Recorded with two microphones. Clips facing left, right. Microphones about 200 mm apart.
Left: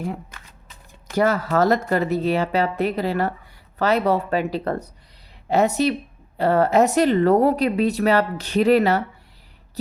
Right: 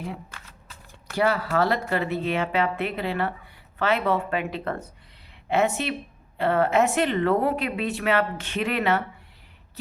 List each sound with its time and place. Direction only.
1.1 s speech: 45° left (ahead or behind)